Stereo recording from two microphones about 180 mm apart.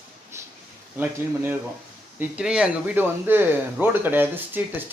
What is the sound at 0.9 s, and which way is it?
Speech, 10° right (ahead or behind).